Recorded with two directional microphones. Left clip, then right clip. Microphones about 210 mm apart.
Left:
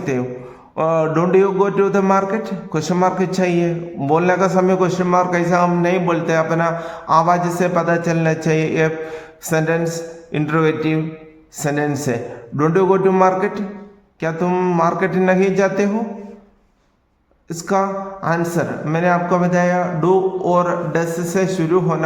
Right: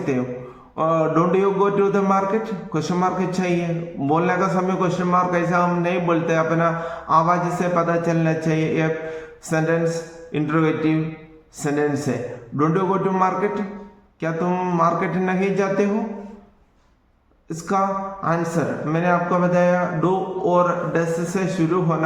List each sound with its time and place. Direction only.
0.8 s a man's voice: 35° left (ahead or behind)
17.5 s a man's voice: 40° left (ahead or behind)